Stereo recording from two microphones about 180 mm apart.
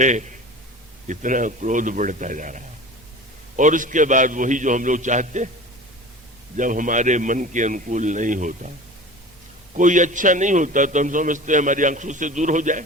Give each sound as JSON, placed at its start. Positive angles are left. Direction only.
{"t": 0.0, "sound": "a man's voice", "side_deg": -45}
{"t": 6.6, "sound": "a man's voice", "side_deg": -45}
{"t": 9.7, "sound": "a man's voice", "side_deg": -45}